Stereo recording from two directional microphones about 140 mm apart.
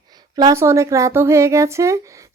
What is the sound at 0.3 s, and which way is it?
A child's voice, 25° right (ahead or behind).